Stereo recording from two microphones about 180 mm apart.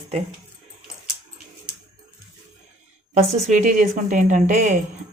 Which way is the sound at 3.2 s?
40° right (ahead or behind).